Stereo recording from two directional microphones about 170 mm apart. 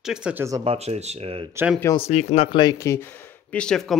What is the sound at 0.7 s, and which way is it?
Speech, 40° right (ahead or behind).